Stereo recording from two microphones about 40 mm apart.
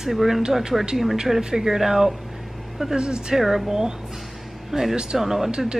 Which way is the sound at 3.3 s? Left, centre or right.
Centre.